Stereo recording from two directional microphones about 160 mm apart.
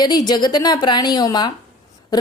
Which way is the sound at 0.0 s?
25° left (ahead or behind).